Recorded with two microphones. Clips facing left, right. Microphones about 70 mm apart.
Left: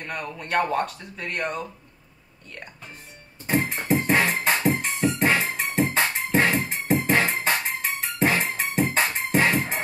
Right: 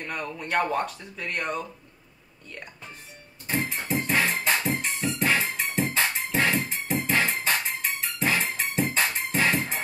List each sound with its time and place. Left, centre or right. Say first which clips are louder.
0.0 s speech: even; centre
3.4 s music: left 5 dB; left